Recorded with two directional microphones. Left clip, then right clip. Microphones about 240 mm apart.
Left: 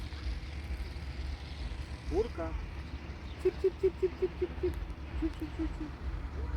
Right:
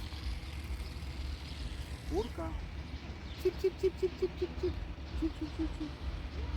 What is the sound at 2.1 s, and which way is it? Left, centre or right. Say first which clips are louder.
Vehicle: left 4 dB; right.